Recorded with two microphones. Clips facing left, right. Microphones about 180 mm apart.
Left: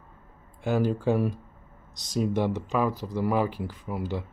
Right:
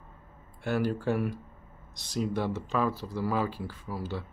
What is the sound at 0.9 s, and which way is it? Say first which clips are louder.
Speech: left 4 dB; 15° left (ahead or behind).